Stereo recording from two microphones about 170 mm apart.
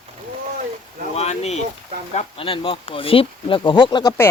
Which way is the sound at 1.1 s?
40° left (ahead or behind).